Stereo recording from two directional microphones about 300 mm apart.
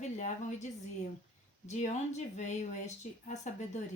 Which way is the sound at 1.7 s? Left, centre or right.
Left.